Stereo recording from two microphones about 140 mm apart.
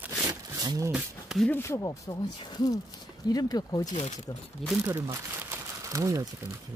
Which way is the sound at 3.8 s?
60° left (ahead or behind).